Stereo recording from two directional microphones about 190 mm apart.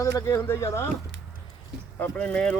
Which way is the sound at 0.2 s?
15° left (ahead or behind).